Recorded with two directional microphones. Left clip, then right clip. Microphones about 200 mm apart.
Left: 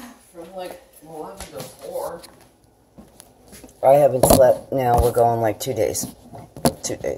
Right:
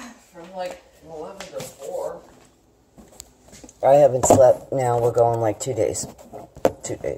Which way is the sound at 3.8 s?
5° right (ahead or behind).